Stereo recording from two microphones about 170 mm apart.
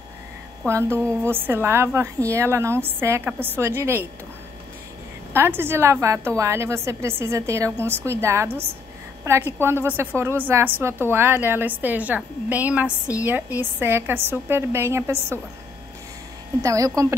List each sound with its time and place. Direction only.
0.7 s a woman's voice: 15° right (ahead or behind)
5.3 s a woman's voice: 15° right (ahead or behind)
16.6 s speech: 20° right (ahead or behind)